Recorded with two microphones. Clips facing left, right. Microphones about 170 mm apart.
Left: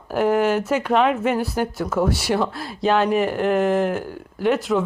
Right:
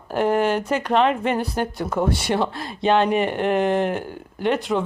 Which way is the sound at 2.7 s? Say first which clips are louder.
Even; 5° left (ahead or behind).